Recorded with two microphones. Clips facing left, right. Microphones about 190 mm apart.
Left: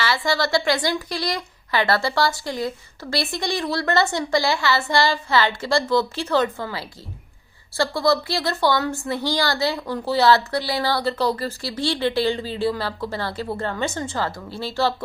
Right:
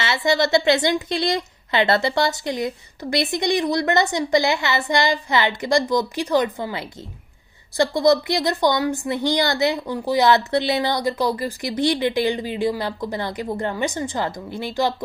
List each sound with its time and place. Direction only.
0.0 s a woman's voice: 20° right (ahead or behind)